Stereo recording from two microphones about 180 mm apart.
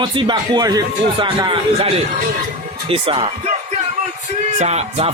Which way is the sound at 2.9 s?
30° right (ahead or behind).